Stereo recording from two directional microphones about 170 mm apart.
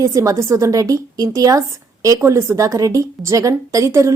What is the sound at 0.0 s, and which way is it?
A woman's voice, 20° right (ahead or behind).